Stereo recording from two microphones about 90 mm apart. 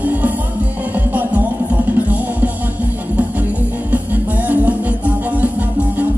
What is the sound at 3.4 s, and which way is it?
Music, 20° right (ahead or behind).